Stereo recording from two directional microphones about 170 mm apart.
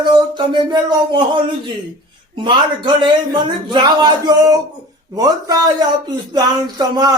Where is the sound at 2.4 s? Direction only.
25° right (ahead or behind).